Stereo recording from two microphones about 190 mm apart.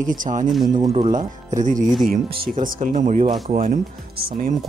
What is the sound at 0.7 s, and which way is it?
Speech, 25° right (ahead or behind).